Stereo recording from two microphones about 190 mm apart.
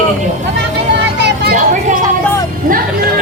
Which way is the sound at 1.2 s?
60° right (ahead or behind).